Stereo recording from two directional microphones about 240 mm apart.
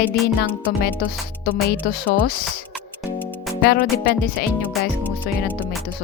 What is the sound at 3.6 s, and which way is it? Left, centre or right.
Speech, left.